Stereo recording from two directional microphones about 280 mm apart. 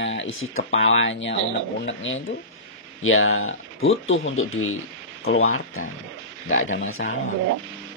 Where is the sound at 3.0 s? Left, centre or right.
Left.